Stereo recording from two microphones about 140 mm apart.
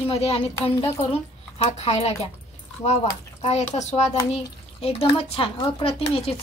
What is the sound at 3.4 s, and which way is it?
A child's voice, 50° left (ahead or behind).